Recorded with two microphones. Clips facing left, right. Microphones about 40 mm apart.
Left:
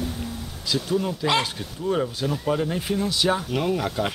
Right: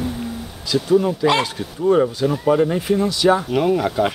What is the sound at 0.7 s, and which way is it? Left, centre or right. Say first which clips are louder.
Speech: right 8 dB; centre.